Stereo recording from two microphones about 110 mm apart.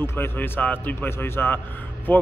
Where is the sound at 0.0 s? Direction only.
20° left (ahead or behind).